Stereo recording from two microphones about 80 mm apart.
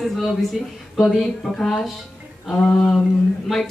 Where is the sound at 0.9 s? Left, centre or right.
Centre.